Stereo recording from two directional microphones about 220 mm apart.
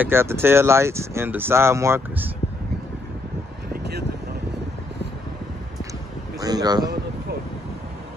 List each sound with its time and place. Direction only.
0.0 s speech: 10° right (ahead or behind)
6.4 s speech: 20° right (ahead or behind)